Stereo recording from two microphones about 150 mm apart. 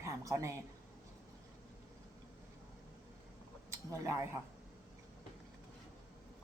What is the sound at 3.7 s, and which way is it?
Speech, 20° right (ahead or behind).